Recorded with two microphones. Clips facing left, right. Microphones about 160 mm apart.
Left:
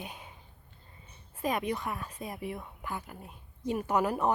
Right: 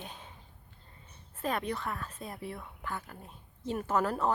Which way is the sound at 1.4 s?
10° left (ahead or behind).